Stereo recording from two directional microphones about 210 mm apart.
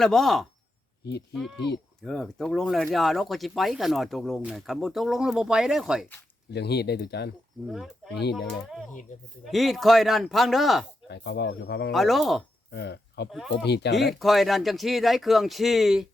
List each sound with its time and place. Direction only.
0.0 s speech: centre (ahead or behind)
1.5 s speech: 55° left (ahead or behind)
2.0 s speech: centre (ahead or behind)
6.5 s speech: 50° left (ahead or behind)
7.7 s speech: centre (ahead or behind)
9.4 s speech: centre (ahead or behind)
11.1 s speech: 50° left (ahead or behind)
11.9 s speech: centre (ahead or behind)
12.7 s speech: 55° left (ahead or behind)
14.1 s speech: centre (ahead or behind)